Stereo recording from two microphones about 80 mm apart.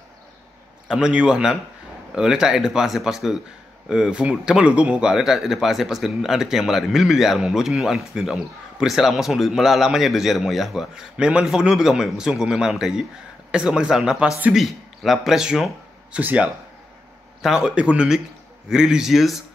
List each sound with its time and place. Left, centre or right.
0.8 s speech: centre
16.2 s speech: right
17.4 s speech: centre